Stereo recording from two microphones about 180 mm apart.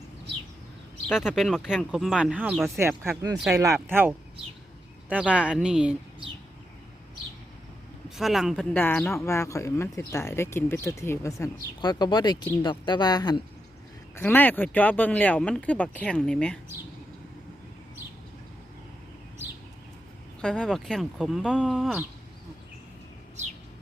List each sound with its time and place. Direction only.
1.0 s speech: 5° right (ahead or behind)
2.7 s speech: 15° right (ahead or behind)
8.1 s speech: centre (ahead or behind); by 13.4 s 20° left (ahead or behind)
14.2 s speech: 10° left (ahead or behind)
20.4 s speech: 5° left (ahead or behind)